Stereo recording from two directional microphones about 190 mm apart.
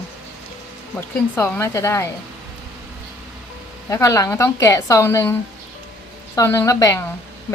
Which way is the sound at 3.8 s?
15° left (ahead or behind).